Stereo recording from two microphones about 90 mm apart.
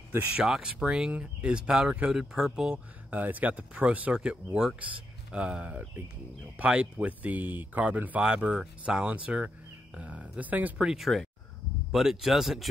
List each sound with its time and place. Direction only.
0.3 s speech: 10° right (ahead or behind)
3.1 s speech: 20° right (ahead or behind)
10.9 s speech: centre (ahead or behind)